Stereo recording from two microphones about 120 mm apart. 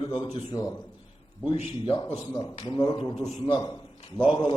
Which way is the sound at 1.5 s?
50° left (ahead or behind).